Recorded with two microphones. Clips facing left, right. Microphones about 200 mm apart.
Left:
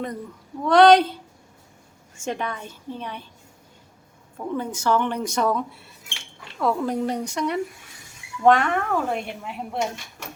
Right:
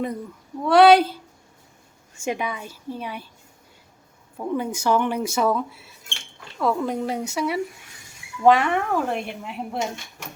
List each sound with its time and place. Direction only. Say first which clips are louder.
0.6 s a woman's voice: even; 5° right (ahead or behind)
2.2 s speech: right 2 dB; 10° right (ahead or behind)
4.4 s a woman's voice: right 2 dB; 10° right (ahead or behind)